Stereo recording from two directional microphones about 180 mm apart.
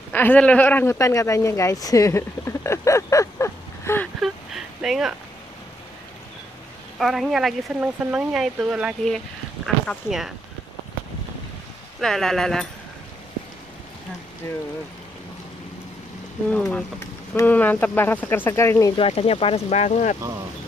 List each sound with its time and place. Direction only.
0.1 s speech: 10° left (ahead or behind)
4.2 s a sound: centre (ahead or behind)
7.0 s speech: centre (ahead or behind)
12.0 s speech: centre (ahead or behind)
14.4 s speech: 15° left (ahead or behind)
16.5 s speech: 5° left (ahead or behind)
18.9 s speech: 35° left (ahead or behind)